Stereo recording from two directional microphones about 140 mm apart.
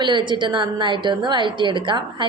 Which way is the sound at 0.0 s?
35° right (ahead or behind).